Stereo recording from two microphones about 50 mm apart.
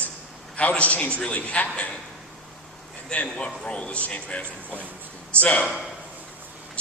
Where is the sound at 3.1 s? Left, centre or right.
Left.